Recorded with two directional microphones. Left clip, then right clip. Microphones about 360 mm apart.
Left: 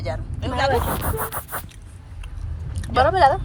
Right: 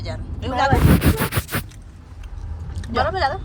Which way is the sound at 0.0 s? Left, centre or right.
Centre.